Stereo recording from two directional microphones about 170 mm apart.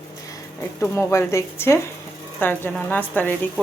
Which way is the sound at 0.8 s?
15° left (ahead or behind).